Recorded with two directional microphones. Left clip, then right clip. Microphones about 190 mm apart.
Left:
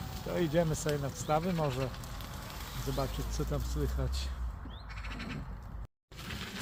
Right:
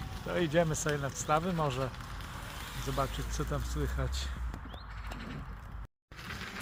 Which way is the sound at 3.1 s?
25° right (ahead or behind).